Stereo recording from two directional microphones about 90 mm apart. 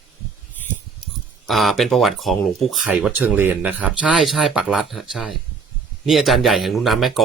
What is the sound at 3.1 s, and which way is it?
Speech, 20° right (ahead or behind).